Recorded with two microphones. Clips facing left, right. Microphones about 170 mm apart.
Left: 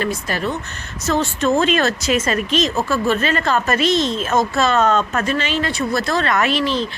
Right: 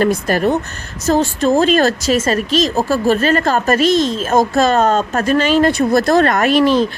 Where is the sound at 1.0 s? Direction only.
35° right (ahead or behind).